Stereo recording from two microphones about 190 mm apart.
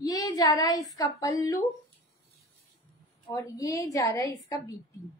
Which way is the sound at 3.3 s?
15° left (ahead or behind).